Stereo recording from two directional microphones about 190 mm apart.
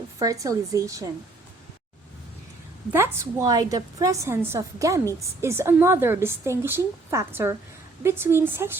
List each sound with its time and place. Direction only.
0.2 s a woman's voice: 20° right (ahead or behind)
2.9 s a woman's voice: 15° right (ahead or behind)